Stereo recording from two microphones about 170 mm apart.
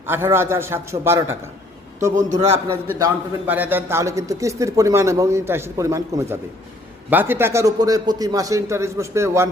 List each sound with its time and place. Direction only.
0.0 s a man's voice: 15° right (ahead or behind)
2.1 s a man's voice: 40° right (ahead or behind)
3.0 s a man's voice: 10° right (ahead or behind)